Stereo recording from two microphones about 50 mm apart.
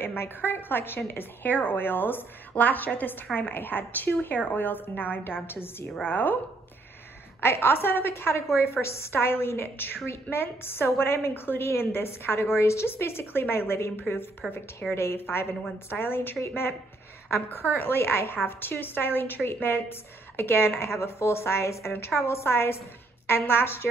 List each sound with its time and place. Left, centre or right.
0.0 s a woman's voice: left
7.3 s a woman's voice: left
12.9 s a woman's voice: left
17.3 s a woman's voice: left
20.8 s a woman's voice: left